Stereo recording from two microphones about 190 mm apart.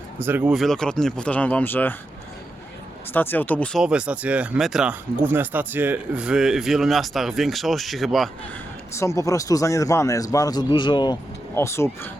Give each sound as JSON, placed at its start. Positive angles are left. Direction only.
{"t": 0.2, "sound": "speech", "side_deg": -10}
{"t": 3.1, "sound": "speech", "side_deg": 10}
{"t": 8.9, "sound": "a man's voice", "side_deg": 15}